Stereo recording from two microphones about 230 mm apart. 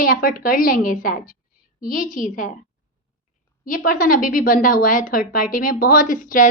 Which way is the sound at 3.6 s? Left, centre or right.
Left.